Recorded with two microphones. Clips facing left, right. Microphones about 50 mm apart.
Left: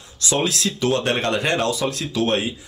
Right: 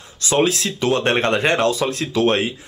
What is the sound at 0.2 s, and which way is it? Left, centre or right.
Speech, right.